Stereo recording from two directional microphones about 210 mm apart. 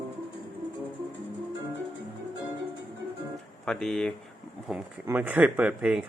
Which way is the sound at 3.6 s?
Centre (ahead or behind).